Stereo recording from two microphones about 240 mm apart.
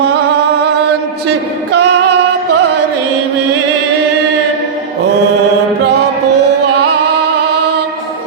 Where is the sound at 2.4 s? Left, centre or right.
Right.